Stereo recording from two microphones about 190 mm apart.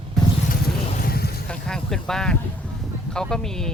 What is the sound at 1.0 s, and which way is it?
Vehicle, 55° left (ahead or behind).